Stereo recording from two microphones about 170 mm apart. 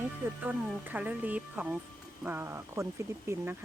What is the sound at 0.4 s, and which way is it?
Speech, 10° right (ahead or behind).